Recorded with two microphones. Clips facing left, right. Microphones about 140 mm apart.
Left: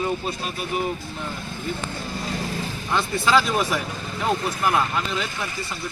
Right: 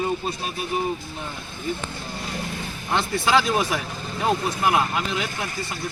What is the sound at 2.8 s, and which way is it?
Speech, 20° right (ahead or behind).